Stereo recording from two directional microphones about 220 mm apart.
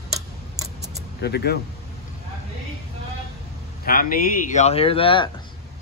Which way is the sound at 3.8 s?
40° left (ahead or behind).